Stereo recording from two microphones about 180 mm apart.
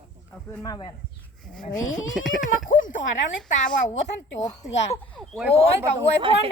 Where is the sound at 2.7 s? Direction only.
45° left (ahead or behind).